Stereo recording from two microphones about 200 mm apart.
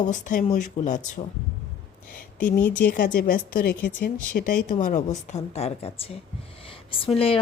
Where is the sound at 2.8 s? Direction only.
45° left (ahead or behind); by 6.2 s 30° left (ahead or behind).